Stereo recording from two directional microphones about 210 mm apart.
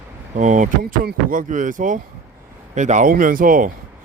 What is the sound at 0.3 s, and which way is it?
Speech, 35° right (ahead or behind).